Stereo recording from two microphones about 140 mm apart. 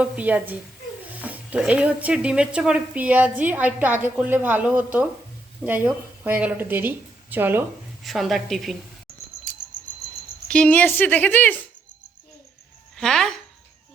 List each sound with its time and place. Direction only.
0.0 s speech: 10° right (ahead or behind)
8.0 s a woman's voice: centre (ahead or behind)
10.5 s a woman's voice: 10° left (ahead or behind)
13.0 s speech: 5° left (ahead or behind)